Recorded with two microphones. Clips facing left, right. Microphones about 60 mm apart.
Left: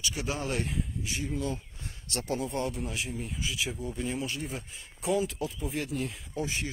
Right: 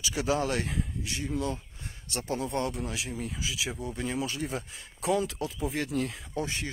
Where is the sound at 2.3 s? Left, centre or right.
Right.